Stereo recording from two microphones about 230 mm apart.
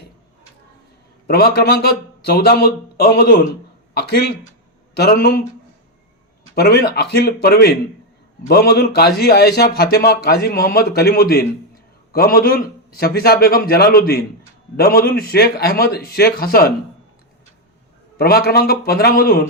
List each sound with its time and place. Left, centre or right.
1.3 s a man's voice: left
6.5 s a man's voice: left
18.2 s a man's voice: left